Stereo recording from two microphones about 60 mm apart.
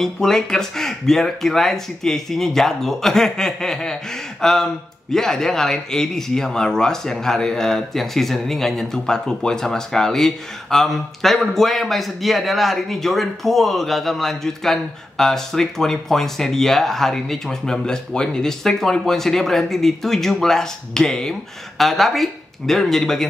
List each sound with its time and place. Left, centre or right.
0.0 s speech: centre